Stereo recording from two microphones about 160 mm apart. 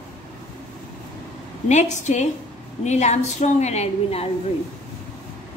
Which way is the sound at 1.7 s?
45° left (ahead or behind).